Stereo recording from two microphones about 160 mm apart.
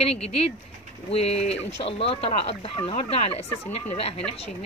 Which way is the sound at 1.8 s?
35° left (ahead or behind).